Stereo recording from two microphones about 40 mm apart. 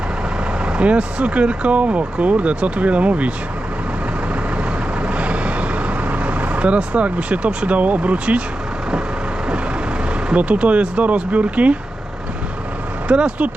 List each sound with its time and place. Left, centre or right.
0.6 s speech: right
5.0 s vehicle: right
6.7 s speech: right
10.3 s speech: right
13.1 s speech: right